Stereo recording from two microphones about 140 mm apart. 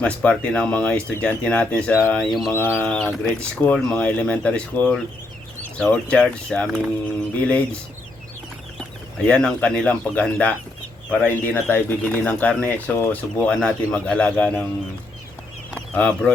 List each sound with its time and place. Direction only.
0.0 s speech: 10° left (ahead or behind)
2.5 s speech: 15° left (ahead or behind)
9.2 s speech: 5° left (ahead or behind)
15.7 s speech: 10° left (ahead or behind)